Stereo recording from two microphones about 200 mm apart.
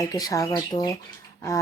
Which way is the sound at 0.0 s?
20° left (ahead or behind).